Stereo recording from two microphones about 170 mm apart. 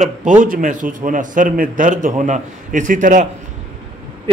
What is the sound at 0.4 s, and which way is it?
A man's voice, 50° right (ahead or behind).